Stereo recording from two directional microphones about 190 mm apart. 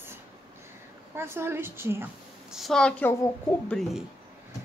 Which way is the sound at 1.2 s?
15° right (ahead or behind).